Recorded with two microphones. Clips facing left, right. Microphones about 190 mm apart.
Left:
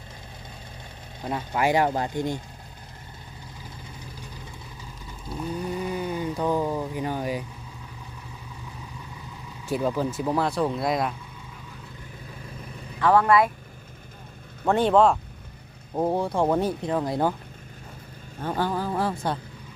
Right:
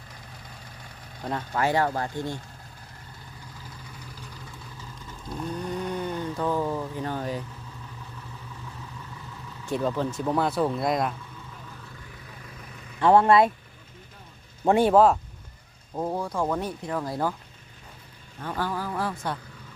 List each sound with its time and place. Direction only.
1.2 s speech: 5° left (ahead or behind)
5.3 s a sound: 5° left (ahead or behind)
9.6 s speech: 10° left (ahead or behind)
13.0 s speech: 25° right (ahead or behind)
14.6 s speech: 10° right (ahead or behind)
16.0 s speech: 25° left (ahead or behind)
18.3 s speech: 25° left (ahead or behind)